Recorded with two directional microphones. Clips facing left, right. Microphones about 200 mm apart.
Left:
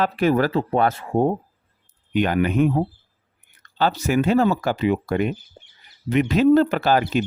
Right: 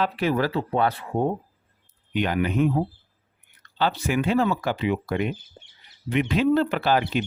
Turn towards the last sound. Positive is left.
turn(degrees=45)  # may be behind; listen again after turning